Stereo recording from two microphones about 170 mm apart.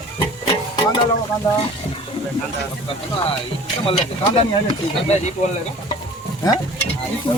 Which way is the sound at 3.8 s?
35° left (ahead or behind).